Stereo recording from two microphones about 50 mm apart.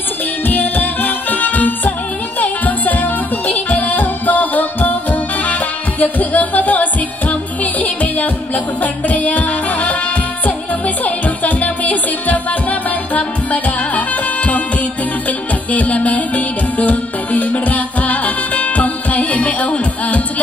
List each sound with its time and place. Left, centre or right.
0.5 s music: left
11.1 s music: left